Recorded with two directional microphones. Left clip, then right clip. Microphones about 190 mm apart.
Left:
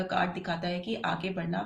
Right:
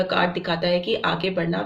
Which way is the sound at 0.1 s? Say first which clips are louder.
Right 8 dB; 35° right (ahead or behind).